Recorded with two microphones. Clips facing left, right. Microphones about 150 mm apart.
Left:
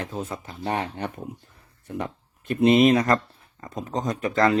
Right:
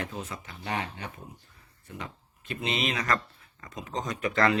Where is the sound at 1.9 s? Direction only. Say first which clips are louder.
Left 10 dB; 55° left (ahead or behind).